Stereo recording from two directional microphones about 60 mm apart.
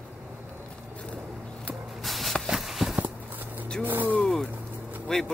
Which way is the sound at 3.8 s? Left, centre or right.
Right.